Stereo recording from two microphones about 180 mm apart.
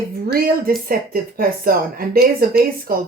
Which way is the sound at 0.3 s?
55° right (ahead or behind).